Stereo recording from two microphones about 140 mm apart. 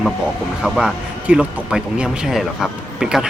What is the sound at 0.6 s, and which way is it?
Speech, 5° right (ahead or behind).